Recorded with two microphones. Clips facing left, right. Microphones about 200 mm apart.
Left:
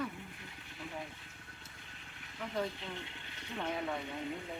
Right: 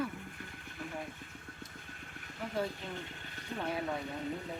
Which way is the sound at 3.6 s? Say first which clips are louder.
Right 1 dB; 40° right (ahead or behind).